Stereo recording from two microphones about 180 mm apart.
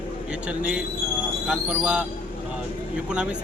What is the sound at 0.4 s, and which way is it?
Speech, 5° right (ahead or behind).